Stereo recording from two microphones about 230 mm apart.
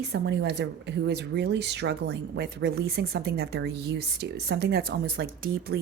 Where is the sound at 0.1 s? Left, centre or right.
Right.